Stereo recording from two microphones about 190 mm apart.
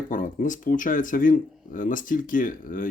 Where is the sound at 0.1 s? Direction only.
45° left (ahead or behind).